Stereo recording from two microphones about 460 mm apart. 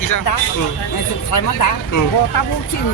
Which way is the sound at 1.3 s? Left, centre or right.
Left.